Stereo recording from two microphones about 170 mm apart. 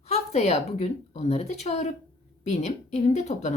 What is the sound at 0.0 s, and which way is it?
A woman's voice, 40° left (ahead or behind).